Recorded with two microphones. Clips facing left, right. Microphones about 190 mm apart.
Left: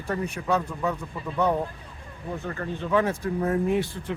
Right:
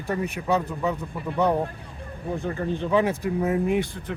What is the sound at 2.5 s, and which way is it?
Speech, 15° right (ahead or behind).